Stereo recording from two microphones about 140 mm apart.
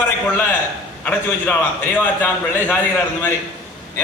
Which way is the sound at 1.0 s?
10° left (ahead or behind).